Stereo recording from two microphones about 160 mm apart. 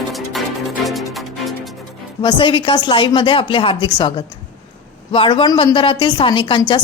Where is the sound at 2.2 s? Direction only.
30° left (ahead or behind).